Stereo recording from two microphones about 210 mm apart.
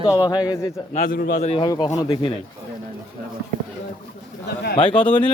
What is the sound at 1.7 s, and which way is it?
Speech, 15° left (ahead or behind).